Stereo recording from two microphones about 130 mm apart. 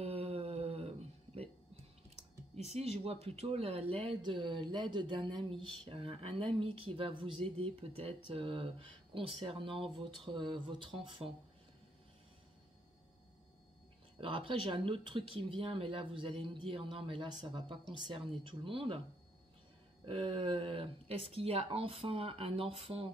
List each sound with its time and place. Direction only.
0.0 s a sound: 50° right (ahead or behind)
2.5 s speech: 55° right (ahead or behind)
14.2 s speech: 40° right (ahead or behind)
20.1 s speech: 45° right (ahead or behind)